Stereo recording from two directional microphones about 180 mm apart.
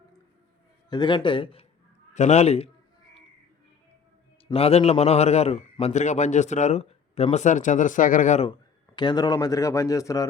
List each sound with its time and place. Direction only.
0.9 s speech: 25° left (ahead or behind)
4.4 s speech: 35° left (ahead or behind)
9.0 s speech: 25° left (ahead or behind)